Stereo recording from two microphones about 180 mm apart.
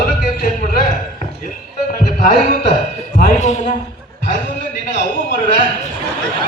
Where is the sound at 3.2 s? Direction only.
45° left (ahead or behind).